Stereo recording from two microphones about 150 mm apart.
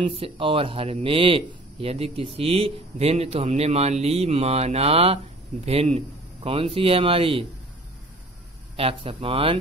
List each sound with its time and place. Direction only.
0.0 s speech: 35° right (ahead or behind)
8.7 s speech: 40° right (ahead or behind)